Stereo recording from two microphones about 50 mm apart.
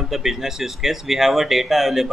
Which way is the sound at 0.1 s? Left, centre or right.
Centre.